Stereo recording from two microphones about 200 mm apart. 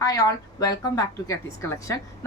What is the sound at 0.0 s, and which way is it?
Speech, 15° left (ahead or behind).